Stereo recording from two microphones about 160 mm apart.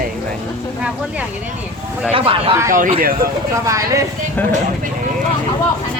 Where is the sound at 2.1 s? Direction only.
35° right (ahead or behind).